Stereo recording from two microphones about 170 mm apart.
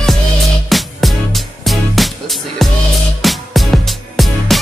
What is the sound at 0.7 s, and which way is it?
Music, centre (ahead or behind).